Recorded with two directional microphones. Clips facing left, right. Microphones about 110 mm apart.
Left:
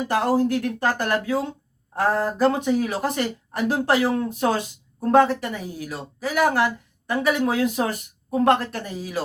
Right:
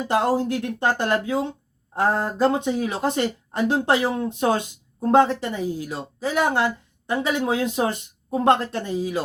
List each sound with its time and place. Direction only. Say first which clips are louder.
0.1 s speech: even; 25° right (ahead or behind)